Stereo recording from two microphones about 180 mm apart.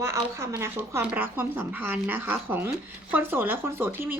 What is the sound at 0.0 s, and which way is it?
Speech, 15° right (ahead or behind).